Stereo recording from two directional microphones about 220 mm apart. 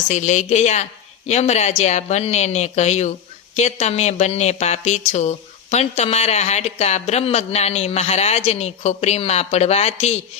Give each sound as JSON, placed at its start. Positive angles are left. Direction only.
{"t": 0.1, "sound": "speech", "side_deg": 30}